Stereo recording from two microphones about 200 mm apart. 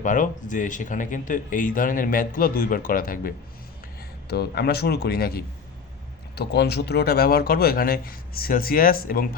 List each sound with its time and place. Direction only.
0.0 s speech: 40° left (ahead or behind)